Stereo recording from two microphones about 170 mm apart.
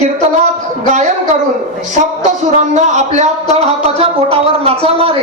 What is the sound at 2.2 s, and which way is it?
Speech, 45° right (ahead or behind).